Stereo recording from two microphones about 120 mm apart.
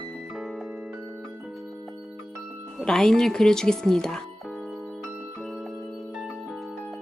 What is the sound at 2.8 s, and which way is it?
Speech, 5° left (ahead or behind).